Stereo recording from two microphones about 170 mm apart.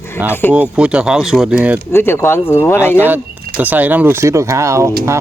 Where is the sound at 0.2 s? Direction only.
10° right (ahead or behind).